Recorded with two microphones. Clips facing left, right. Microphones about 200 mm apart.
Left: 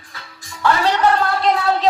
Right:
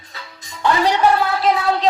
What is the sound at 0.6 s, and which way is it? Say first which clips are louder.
A woman's voice: right 1 dB; 15° right (ahead or behind).